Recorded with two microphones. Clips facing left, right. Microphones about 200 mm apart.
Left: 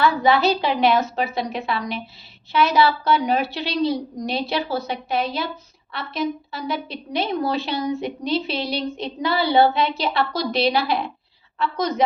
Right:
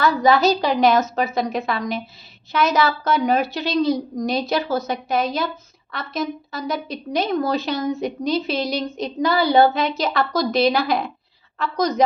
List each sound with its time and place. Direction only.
0.0 s a woman's voice: 40° right (ahead or behind)